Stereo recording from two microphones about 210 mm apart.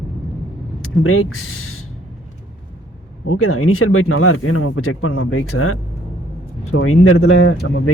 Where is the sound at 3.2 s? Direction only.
85° left.